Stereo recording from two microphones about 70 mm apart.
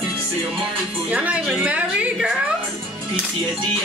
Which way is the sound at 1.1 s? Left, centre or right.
Right.